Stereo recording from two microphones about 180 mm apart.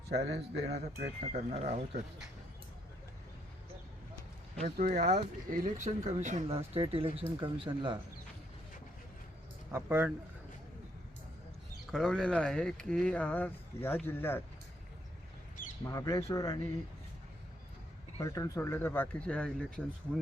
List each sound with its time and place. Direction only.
0.2 s speech: 35° right (ahead or behind)
4.6 s speech: 40° right (ahead or behind)
6.7 s speech: 30° right (ahead or behind)
9.7 s speech: 15° right (ahead or behind)
11.9 s speech: centre (ahead or behind)
15.8 s speech: 15° left (ahead or behind)
18.2 s speech: 20° left (ahead or behind)